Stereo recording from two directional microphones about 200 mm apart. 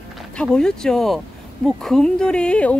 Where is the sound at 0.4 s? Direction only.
5° left (ahead or behind).